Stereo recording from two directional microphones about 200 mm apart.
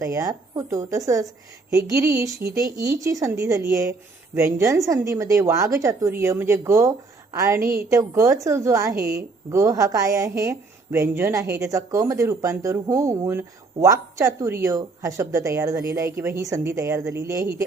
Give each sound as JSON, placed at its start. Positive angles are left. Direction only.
{"t": 0.0, "sound": "a woman's voice", "side_deg": -15}